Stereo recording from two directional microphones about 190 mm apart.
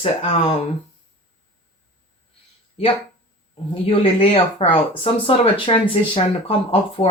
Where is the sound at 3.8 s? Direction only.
30° left (ahead or behind).